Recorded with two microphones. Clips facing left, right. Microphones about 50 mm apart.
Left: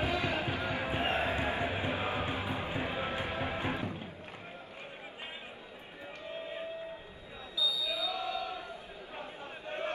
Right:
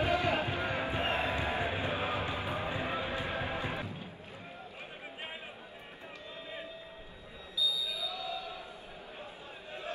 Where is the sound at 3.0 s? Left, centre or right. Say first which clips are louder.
Left 1 dB; left.